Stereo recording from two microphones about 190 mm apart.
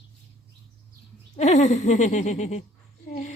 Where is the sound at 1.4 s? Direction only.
40° left (ahead or behind).